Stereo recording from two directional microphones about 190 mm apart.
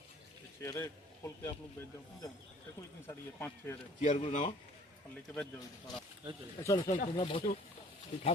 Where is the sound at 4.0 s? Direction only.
40° left (ahead or behind).